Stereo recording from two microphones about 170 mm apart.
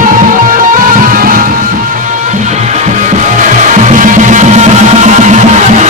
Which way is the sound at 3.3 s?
50° right (ahead or behind).